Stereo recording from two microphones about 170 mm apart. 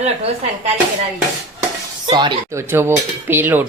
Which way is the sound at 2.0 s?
25° right (ahead or behind).